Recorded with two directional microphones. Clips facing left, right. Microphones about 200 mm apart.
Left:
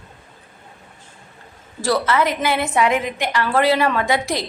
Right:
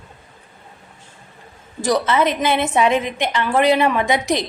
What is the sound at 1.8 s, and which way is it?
A woman's voice, 20° right (ahead or behind).